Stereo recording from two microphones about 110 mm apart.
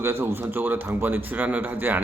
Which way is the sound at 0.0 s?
20° right (ahead or behind).